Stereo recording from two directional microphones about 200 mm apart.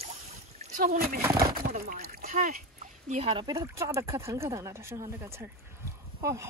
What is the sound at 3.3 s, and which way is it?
Speech, 20° right (ahead or behind).